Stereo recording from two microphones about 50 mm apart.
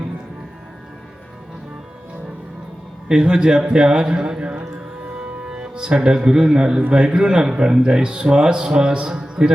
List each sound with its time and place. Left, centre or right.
3.1 s a man's voice: centre